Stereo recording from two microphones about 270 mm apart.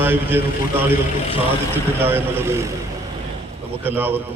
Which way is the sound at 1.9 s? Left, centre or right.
Centre.